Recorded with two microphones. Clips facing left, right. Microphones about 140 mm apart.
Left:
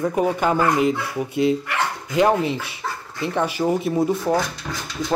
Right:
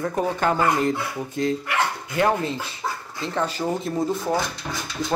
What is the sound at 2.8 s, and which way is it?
Dog, 15° right (ahead or behind).